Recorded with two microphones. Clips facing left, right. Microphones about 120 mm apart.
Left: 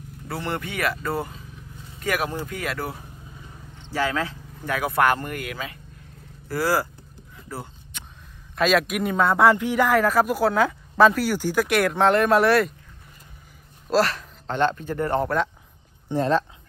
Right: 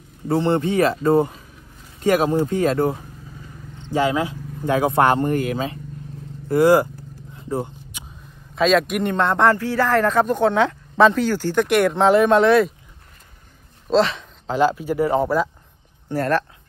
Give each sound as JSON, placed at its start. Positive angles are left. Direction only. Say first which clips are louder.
{"t": 0.3, "sound": "speech", "louder": "right 11 dB", "side_deg": -25}
{"t": 6.5, "sound": "speech", "louder": "right 9 dB", "side_deg": -20}
{"t": 7.3, "sound": "a sound", "louder": "right 10 dB", "side_deg": -20}
{"t": 7.9, "sound": "a man's voice", "louder": "right 3 dB", "side_deg": -5}
{"t": 13.8, "sound": "speech", "louder": "right 3 dB", "side_deg": 5}
{"t": 16.1, "sound": "speech", "louder": "right 1 dB", "side_deg": 20}